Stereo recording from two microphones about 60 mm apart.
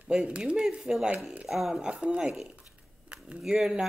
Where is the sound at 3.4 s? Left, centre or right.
Centre.